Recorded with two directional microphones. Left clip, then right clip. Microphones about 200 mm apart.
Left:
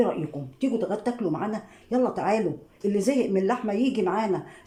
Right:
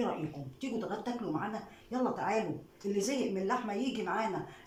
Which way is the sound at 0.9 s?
50° left (ahead or behind).